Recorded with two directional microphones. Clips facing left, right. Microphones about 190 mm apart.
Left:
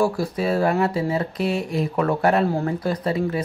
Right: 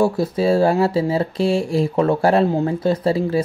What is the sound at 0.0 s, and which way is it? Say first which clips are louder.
Speech: right 4 dB; 25° right (ahead or behind).